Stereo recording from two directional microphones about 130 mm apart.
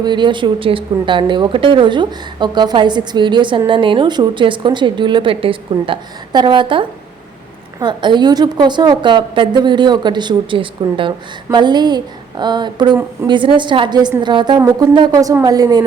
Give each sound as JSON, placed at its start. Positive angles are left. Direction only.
{"t": 0.0, "sound": "a woman's voice", "side_deg": -35}